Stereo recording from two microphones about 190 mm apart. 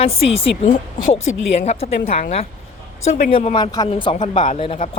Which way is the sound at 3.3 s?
30° left (ahead or behind).